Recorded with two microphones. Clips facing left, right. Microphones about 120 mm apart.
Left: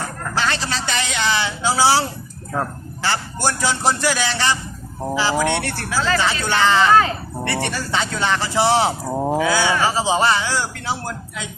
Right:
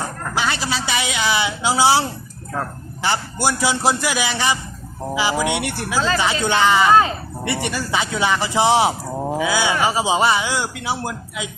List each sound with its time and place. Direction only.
0.0 s speech: 10° right (ahead or behind)
9.1 s speech: 15° left (ahead or behind)
9.4 s speech: 15° right (ahead or behind)